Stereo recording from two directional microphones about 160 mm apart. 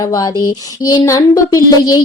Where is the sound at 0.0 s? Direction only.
20° left (ahead or behind).